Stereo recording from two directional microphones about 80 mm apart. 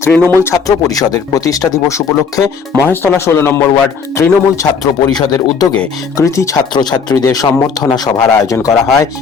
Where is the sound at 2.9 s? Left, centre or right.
Left.